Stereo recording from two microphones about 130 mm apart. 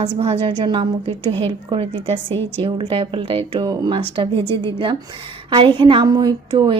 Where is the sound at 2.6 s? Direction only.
45° right (ahead or behind).